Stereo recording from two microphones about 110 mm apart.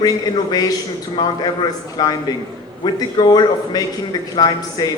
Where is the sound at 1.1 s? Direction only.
45° left (ahead or behind).